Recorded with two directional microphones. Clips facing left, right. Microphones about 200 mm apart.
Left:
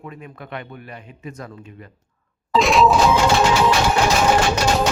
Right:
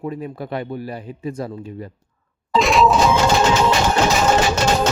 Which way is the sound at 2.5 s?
Centre (ahead or behind).